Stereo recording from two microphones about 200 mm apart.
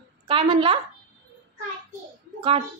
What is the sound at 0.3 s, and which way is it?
Speech, 25° right (ahead or behind).